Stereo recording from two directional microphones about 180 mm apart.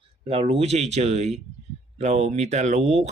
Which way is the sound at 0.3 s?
30° right (ahead or behind).